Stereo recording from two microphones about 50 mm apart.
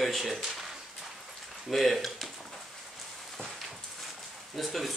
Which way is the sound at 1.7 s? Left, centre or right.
Centre.